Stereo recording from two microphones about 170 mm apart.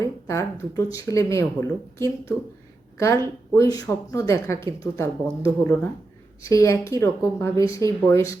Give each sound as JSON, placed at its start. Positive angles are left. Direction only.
{"t": 0.0, "sound": "speech", "side_deg": 15}
{"t": 3.5, "sound": "speech", "side_deg": 20}